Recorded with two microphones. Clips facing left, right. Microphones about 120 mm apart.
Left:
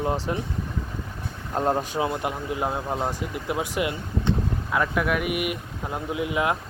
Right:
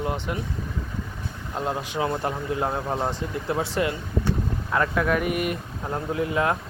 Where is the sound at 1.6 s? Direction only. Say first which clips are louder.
Left 4 dB; 40° left (ahead or behind).